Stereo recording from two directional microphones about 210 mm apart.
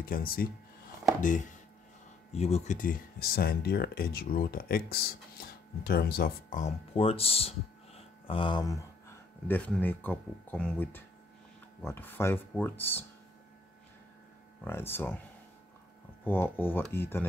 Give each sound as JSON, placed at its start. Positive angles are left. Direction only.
{"t": 0.0, "sound": "speech", "side_deg": 45}
{"t": 2.3, "sound": "speech", "side_deg": 30}
{"t": 9.5, "sound": "speech", "side_deg": 5}
{"t": 14.6, "sound": "speech", "side_deg": 10}
{"t": 16.3, "sound": "speech", "side_deg": 10}